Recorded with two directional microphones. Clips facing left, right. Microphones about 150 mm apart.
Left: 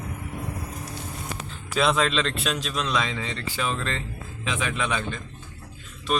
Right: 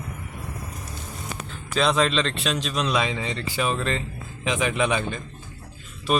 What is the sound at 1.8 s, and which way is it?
A man's voice, centre (ahead or behind).